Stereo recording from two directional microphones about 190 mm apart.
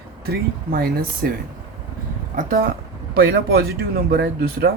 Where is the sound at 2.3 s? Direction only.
50° right (ahead or behind).